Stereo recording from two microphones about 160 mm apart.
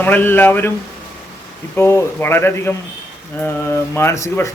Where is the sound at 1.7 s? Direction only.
15° left (ahead or behind).